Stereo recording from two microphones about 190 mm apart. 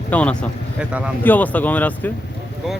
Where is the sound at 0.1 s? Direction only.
5° left (ahead or behind).